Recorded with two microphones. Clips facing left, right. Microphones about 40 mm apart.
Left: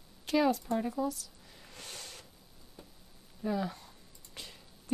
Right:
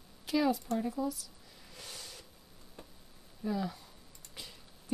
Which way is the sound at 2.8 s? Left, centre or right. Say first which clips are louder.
Right 1 dB; right.